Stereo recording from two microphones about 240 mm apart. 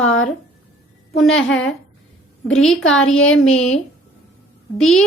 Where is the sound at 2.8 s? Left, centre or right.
Left.